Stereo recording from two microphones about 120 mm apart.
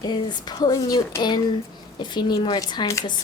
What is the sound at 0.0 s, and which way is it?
A woman's voice, 35° left (ahead or behind).